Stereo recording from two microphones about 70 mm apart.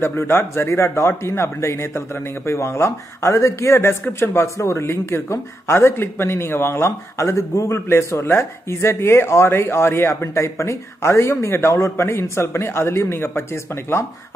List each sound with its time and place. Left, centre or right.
0.0 s speech: left